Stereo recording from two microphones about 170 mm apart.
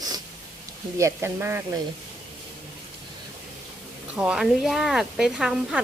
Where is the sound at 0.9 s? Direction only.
15° right (ahead or behind).